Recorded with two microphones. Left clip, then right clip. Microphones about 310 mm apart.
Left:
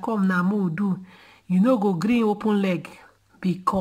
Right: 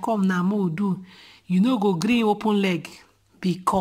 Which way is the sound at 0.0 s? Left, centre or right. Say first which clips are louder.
Even; centre.